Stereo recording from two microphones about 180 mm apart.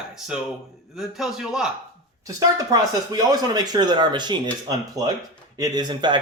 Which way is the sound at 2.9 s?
20° right (ahead or behind).